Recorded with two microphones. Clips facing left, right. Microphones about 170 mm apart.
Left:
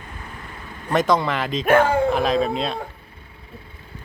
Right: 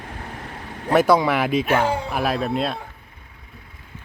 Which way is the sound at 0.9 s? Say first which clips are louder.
Right 3 dB; 10° right (ahead or behind).